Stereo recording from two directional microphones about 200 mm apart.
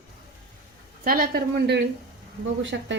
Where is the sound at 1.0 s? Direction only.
45° right (ahead or behind).